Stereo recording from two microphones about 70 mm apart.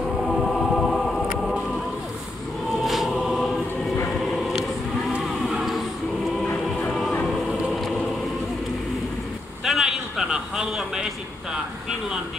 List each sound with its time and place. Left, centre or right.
0.3 s music: centre
2.8 s a sound: centre
5.2 s choir: centre
6.4 s music: left
6.9 s music: centre
9.7 s a sound: centre